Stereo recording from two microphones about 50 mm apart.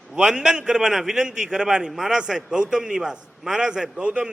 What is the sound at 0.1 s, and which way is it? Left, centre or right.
A man's voice, centre.